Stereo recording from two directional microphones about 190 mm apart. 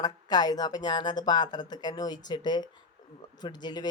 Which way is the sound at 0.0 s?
20° left (ahead or behind).